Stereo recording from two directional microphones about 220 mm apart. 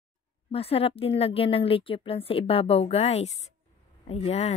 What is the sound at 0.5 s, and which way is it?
A woman's voice, 25° left (ahead or behind).